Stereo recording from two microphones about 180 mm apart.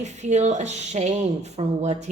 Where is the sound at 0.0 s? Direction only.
40° right (ahead or behind).